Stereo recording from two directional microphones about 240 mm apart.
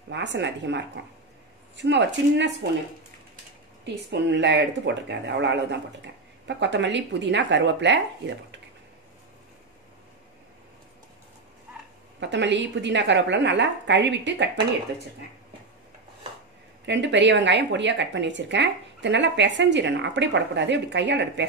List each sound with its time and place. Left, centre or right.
0.1 s a woman's voice: right
3.8 s a woman's voice: right
12.2 s a woman's voice: right
16.8 s a woman's voice: right